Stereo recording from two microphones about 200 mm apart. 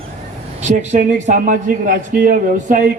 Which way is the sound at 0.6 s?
35° right (ahead or behind).